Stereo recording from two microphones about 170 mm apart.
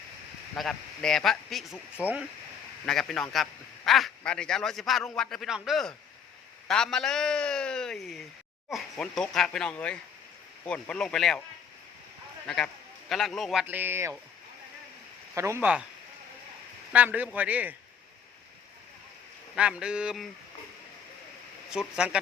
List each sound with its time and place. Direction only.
0.5 s a man's voice: centre (ahead or behind)
12.5 s a man's voice: 5° left (ahead or behind); by 14.1 s 15° right (ahead or behind)
15.4 s a man's voice: 15° right (ahead or behind)
16.9 s a man's voice: 10° right (ahead or behind)
19.5 s a man's voice: 5° right (ahead or behind)
21.7 s a man's voice: 5° right (ahead or behind)